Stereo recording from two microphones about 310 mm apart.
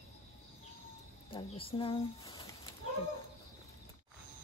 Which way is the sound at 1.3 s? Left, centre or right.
Centre.